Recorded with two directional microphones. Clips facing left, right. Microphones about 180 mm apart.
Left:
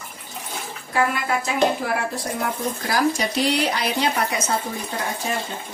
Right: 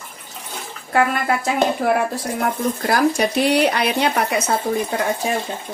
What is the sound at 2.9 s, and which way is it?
Speech, 55° right (ahead or behind).